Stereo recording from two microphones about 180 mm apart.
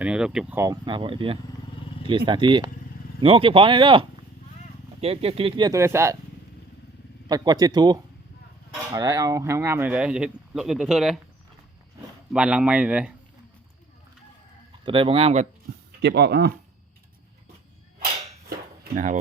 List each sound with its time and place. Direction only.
0.0 s speech: 5° right (ahead or behind)
7.3 s speech: 25° right (ahead or behind); by 11.2 s centre (ahead or behind)
12.3 s speech: 5° right (ahead or behind)
14.8 s speech: 30° right (ahead or behind)
16.0 s speech: 70° right (ahead or behind)
18.9 s speech: 45° right (ahead or behind)